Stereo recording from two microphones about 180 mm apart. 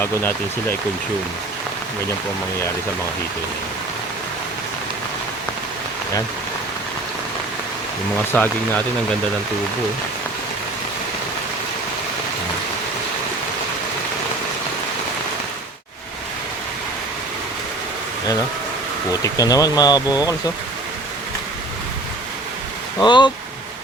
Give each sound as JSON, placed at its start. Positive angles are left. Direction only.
{"t": 0.0, "sound": "speech", "side_deg": 10}
{"t": 8.3, "sound": "speech", "side_deg": 10}
{"t": 19.2, "sound": "speech", "side_deg": 20}
{"t": 23.0, "sound": "speech", "side_deg": 25}